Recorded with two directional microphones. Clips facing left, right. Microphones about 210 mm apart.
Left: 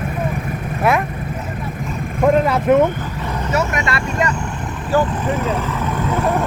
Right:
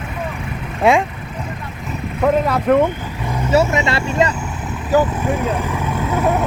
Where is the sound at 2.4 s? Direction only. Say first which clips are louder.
Left 1 dB; 5° left (ahead or behind).